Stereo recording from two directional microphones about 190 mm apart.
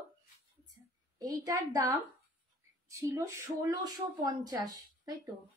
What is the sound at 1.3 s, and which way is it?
A woman's voice, 15° right (ahead or behind).